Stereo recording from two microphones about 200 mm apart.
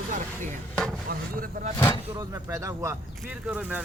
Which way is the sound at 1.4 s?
45° right (ahead or behind).